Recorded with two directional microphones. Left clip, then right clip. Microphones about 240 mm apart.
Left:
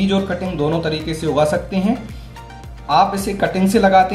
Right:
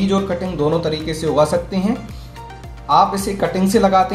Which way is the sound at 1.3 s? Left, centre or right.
Left.